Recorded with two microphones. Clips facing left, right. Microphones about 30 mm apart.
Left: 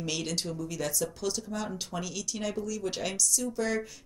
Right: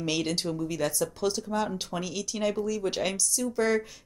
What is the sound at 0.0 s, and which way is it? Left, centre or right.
A woman's voice, centre.